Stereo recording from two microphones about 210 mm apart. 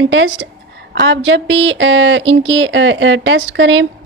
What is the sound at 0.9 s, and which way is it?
Speech, 60° right (ahead or behind).